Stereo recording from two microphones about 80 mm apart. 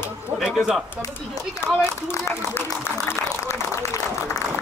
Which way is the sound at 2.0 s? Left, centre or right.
Left.